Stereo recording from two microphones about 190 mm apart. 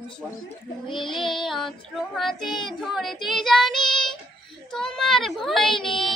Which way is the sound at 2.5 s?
25° left (ahead or behind).